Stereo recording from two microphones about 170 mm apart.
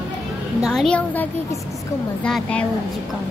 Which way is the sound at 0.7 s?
5° left (ahead or behind).